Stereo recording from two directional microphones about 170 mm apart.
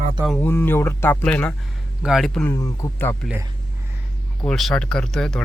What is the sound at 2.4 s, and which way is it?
Speech, 20° left (ahead or behind).